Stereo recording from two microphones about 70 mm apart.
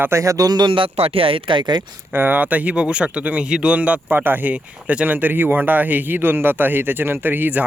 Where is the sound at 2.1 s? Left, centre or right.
Right.